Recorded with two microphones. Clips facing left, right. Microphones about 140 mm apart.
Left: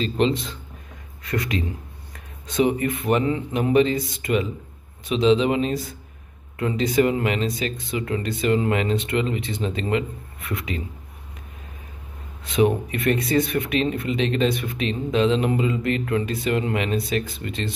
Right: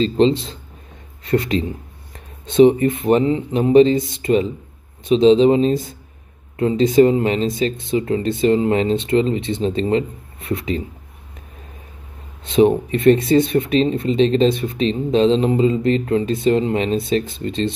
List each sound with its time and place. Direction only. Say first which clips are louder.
0.0 s speech: right 6 dB; 30° right (ahead or behind)
12.4 s speech: right 6 dB; 25° right (ahead or behind)